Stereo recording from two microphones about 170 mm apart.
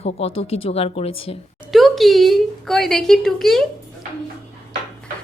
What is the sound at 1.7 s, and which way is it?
A woman's voice, centre (ahead or behind).